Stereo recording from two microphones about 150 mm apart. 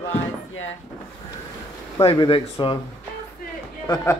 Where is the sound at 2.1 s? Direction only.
35° left (ahead or behind).